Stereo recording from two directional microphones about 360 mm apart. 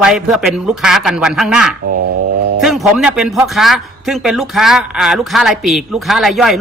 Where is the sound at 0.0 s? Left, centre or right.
Centre.